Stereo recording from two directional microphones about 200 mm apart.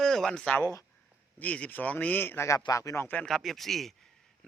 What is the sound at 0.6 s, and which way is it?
A man's voice, 15° left (ahead or behind).